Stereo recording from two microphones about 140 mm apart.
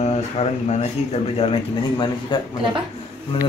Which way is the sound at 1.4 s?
35° left (ahead or behind).